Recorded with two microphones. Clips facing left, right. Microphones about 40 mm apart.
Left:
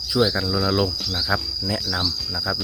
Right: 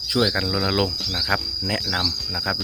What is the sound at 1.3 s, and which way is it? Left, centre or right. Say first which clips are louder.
Speech: even; right.